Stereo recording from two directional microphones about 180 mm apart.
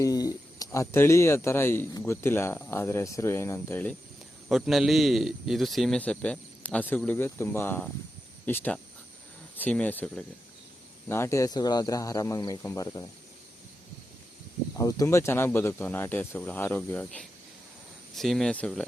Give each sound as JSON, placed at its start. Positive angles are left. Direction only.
{"t": 0.0, "sound": "speech", "side_deg": 20}
{"t": 4.4, "sound": "a man's voice", "side_deg": 0}
{"t": 14.8, "sound": "a man's voice", "side_deg": 20}